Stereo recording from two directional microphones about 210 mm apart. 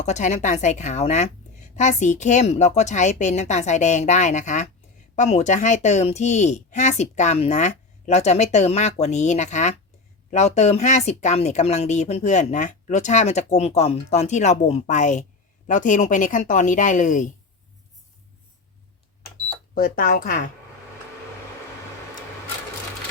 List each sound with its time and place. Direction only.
0.0 s speech: 35° left (ahead or behind)
19.7 s speech: 45° left (ahead or behind)